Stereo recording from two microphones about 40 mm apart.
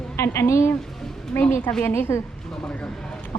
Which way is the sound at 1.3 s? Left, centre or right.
Left.